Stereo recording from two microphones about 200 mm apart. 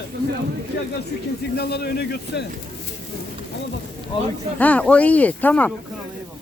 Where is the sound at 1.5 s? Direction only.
50° left (ahead or behind).